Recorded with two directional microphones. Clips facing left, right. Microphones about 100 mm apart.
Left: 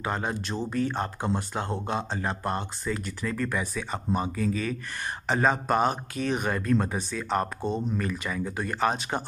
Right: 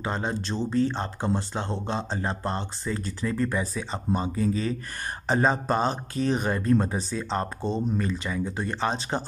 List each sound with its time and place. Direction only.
0.0 s speech: 25° right (ahead or behind)